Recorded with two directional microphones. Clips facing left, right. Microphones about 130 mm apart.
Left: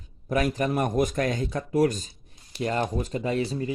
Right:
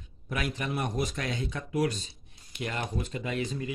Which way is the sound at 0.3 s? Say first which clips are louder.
Left 8 dB; 40° left (ahead or behind).